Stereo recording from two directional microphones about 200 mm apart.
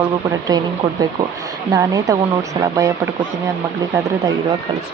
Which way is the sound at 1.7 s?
15° right (ahead or behind).